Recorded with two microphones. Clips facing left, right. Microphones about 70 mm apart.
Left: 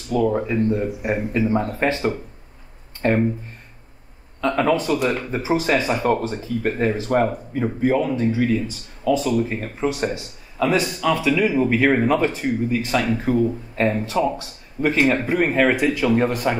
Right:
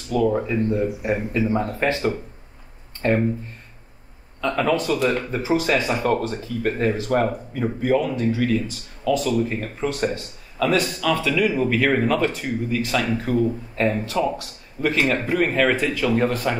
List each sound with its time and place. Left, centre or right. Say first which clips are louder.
0.2 s speech: left 1 dB; centre
1.8 s speech: left 1 dB; left
3.0 s speech: left 1 dB; centre
4.6 s speech: left 1 dB; centre